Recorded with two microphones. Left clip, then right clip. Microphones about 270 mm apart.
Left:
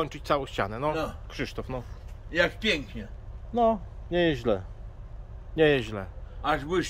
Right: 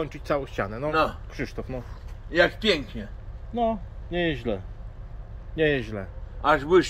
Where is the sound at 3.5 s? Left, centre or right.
Centre.